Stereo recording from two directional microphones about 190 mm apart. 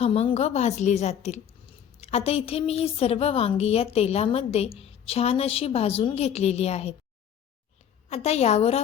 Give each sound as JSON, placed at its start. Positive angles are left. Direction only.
{"t": 0.0, "sound": "a woman's voice", "side_deg": 30}
{"t": 8.1, "sound": "a woman's voice", "side_deg": 35}